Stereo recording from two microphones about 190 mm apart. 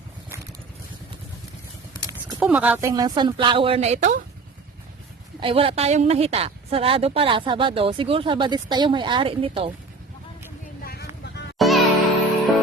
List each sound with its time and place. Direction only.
2.4 s a woman's voice: 5° right (ahead or behind); by 4.2 s 40° right (ahead or behind)
5.4 s a woman's voice: 30° right (ahead or behind)
11.5 s music: centre (ahead or behind)